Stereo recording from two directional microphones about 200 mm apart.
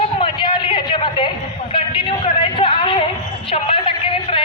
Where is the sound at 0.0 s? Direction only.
25° left (ahead or behind).